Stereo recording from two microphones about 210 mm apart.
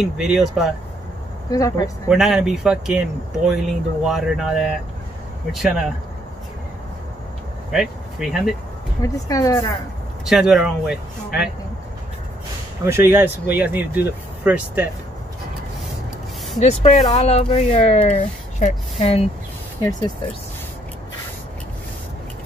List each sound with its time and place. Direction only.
0.0 s speech: centre (ahead or behind)
1.5 s speech: 15° left (ahead or behind)
2.0 s speech: centre (ahead or behind)
7.7 s speech: centre (ahead or behind)
9.0 s speech: 15° left (ahead or behind)
10.2 s speech: centre (ahead or behind)
12.8 s speech: 10° right (ahead or behind)
16.5 s speech: 30° left (ahead or behind)
19.8 s speech: 15° left (ahead or behind)